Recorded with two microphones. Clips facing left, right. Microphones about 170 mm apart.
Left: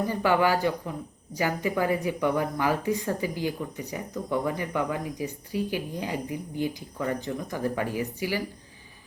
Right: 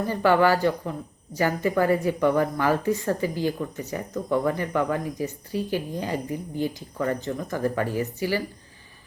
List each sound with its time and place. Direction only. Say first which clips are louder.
0.1 s a woman's voice: right 5 dB; 15° left (ahead or behind)